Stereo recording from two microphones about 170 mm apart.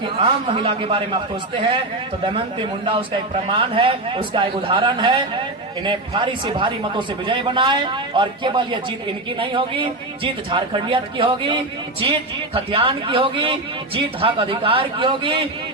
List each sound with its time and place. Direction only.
0.2 s a man's voice: 30° right (ahead or behind)